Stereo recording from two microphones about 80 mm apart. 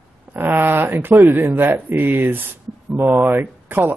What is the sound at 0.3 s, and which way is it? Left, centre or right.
Speech, right.